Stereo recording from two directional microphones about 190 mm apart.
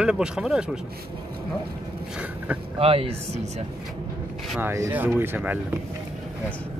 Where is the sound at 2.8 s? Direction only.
30° right (ahead or behind).